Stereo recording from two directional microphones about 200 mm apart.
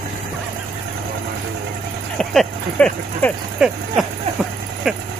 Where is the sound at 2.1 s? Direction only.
5° left (ahead or behind).